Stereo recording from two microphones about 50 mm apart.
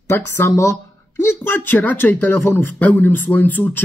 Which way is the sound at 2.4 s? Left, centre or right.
Left.